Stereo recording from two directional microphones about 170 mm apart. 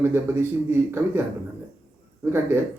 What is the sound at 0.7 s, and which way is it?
Speech, 15° right (ahead or behind).